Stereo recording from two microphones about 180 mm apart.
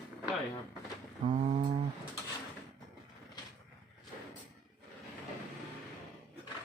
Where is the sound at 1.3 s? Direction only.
40° right (ahead or behind).